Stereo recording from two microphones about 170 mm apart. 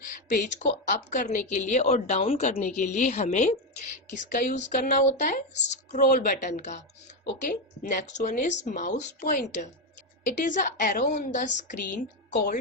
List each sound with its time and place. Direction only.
0.9 s a woman's voice: 50° left (ahead or behind)
5.5 s a woman's voice: 90° left
5.9 s a woman's voice: 50° left (ahead or behind)